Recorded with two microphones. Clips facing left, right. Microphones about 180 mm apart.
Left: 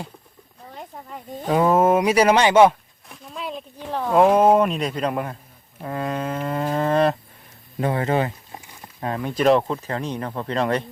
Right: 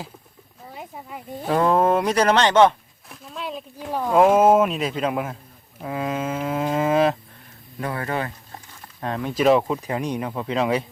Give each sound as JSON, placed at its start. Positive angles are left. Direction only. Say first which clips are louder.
{"t": 0.7, "sound": "speech", "louder": "even", "side_deg": -5}
{"t": 1.5, "sound": "speech", "louder": "left 1 dB", "side_deg": 5}
{"t": 3.1, "sound": "speech", "louder": "even", "side_deg": 0}
{"t": 7.8, "sound": "speech", "louder": "left 5 dB", "side_deg": 25}